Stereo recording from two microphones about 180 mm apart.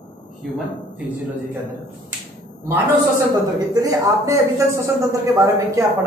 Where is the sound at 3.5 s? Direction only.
20° right (ahead or behind).